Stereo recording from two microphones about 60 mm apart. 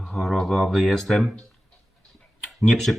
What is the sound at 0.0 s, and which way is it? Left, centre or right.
Speech, centre.